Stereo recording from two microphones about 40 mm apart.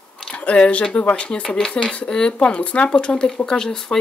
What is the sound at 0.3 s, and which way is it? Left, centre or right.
Speech, left.